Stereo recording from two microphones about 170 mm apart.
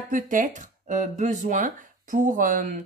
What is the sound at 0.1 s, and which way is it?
A woman's voice, 50° right (ahead or behind).